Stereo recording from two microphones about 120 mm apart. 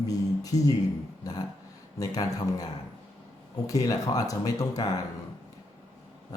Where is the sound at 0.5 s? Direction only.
30° left (ahead or behind).